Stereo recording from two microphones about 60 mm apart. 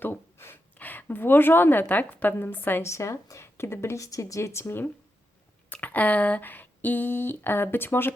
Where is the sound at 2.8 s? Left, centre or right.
Left.